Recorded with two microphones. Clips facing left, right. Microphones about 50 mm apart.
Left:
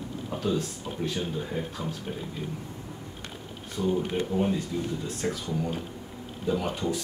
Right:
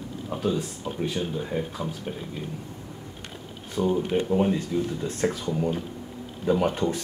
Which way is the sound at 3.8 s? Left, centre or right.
Right.